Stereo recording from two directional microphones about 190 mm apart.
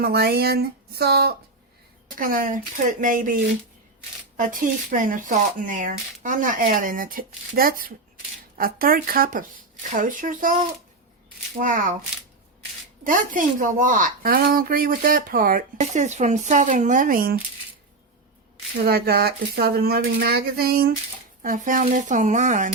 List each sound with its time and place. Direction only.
0.0 s speech: 55° right (ahead or behind)
4.4 s speech: 45° right (ahead or behind)
11.6 s speech: 45° right (ahead or behind)
13.1 s speech: 45° right (ahead or behind)
18.9 s speech: 55° right (ahead or behind)